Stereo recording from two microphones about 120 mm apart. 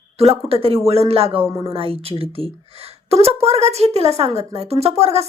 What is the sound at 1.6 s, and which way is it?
A woman's voice, 50° right (ahead or behind).